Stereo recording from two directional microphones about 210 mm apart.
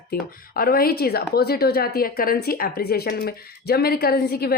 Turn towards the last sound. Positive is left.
turn(degrees=50)  # may be behind; listen again after turning